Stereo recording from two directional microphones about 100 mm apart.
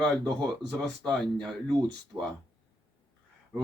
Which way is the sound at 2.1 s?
30° right (ahead or behind).